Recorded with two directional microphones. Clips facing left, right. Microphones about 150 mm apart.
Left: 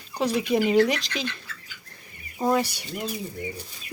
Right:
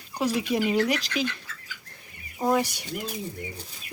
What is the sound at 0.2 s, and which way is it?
Speech, 10° right (ahead or behind).